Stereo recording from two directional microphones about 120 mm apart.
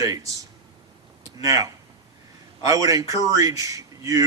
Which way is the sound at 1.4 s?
25° right (ahead or behind).